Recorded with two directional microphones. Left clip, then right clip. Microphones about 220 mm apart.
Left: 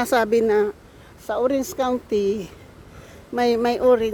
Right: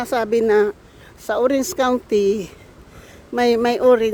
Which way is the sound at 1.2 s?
25° right (ahead or behind).